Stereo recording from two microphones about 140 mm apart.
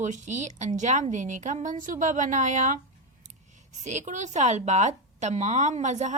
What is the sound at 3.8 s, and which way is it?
A woman's voice, 60° right (ahead or behind).